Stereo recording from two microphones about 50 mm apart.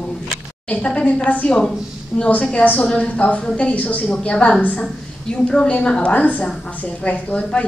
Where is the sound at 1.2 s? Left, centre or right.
Left.